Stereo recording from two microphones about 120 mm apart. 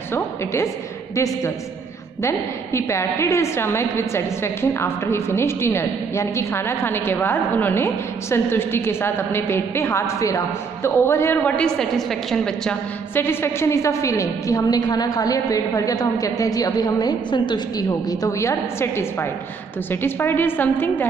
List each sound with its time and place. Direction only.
0.1 s a woman's voice: 20° left (ahead or behind)
11.5 s a woman's voice: 5° left (ahead or behind)
13.1 s a woman's voice: 20° left (ahead or behind)